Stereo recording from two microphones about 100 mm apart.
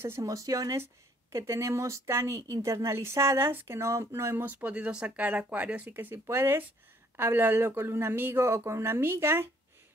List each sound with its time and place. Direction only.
0.0 s speech: 30° right (ahead or behind)